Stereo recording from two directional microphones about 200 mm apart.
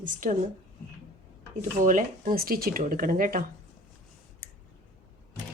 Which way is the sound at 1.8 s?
40° right (ahead or behind).